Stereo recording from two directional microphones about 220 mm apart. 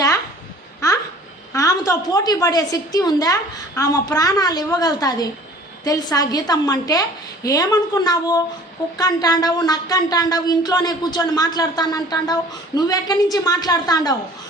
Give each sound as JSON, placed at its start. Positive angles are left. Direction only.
{"t": 0.8, "sound": "babbling", "side_deg": 15}
{"t": 1.5, "sound": "speech", "side_deg": 15}